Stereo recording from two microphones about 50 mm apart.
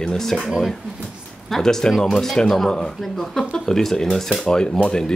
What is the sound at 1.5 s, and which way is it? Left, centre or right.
Speech, centre.